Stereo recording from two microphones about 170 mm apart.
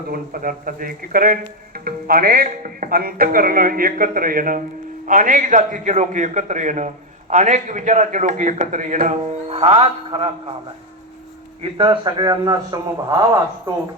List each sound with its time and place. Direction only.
0.1 s a man's voice: 55° right (ahead or behind); by 10.5 s 30° right (ahead or behind)
11.6 s a man's voice: 30° right (ahead or behind)